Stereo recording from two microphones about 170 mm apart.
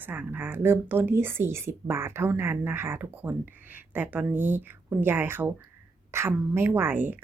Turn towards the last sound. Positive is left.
turn(degrees=-10)  # may be behind; listen again after turning